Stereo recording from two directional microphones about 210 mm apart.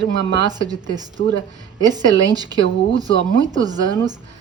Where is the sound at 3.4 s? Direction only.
20° right (ahead or behind).